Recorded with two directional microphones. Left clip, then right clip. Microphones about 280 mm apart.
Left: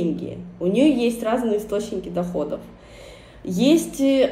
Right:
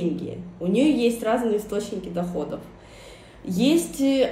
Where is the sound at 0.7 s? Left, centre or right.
Centre.